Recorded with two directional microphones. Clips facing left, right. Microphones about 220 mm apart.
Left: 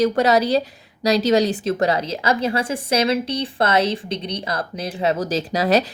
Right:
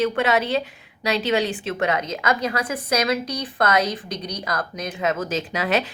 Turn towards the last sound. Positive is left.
turn(degrees=35)  # may be behind; listen again after turning